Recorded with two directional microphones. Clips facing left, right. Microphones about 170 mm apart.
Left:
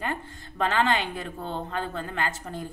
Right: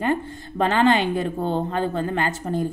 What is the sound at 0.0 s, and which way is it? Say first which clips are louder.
Speech: right 9 dB; 25° right (ahead or behind).